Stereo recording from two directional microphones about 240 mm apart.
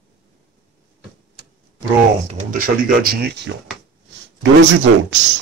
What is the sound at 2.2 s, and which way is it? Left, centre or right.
Speech, right.